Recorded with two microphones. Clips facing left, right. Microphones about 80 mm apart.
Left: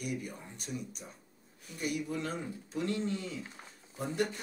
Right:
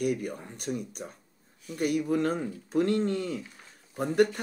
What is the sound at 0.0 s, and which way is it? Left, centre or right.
Speech, right.